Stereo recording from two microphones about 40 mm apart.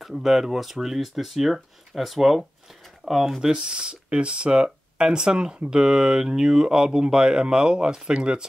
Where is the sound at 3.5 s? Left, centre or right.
Right.